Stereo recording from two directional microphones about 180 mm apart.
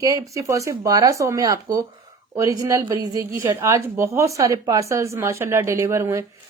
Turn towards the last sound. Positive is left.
turn(degrees=-15)  # may be behind; listen again after turning